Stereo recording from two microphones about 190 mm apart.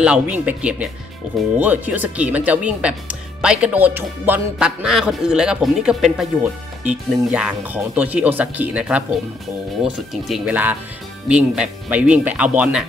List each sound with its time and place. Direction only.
0.0 s speech: 5° right (ahead or behind)